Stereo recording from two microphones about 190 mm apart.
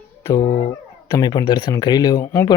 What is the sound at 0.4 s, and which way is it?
Speech, 50° left (ahead or behind).